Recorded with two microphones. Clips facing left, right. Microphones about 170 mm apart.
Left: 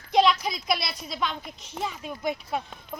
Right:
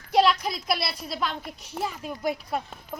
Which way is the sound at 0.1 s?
5° right (ahead or behind).